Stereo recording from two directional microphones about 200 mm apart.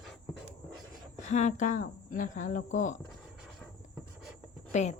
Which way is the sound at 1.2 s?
35° left (ahead or behind).